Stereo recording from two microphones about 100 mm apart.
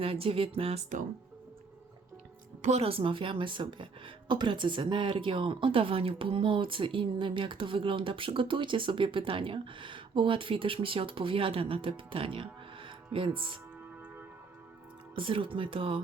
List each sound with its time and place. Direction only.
0.0 s speech: 70° right (ahead or behind)
2.7 s speech: 70° right (ahead or behind)
15.1 s speech: 60° right (ahead or behind)